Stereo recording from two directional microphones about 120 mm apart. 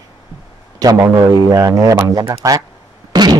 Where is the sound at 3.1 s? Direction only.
35° right (ahead or behind).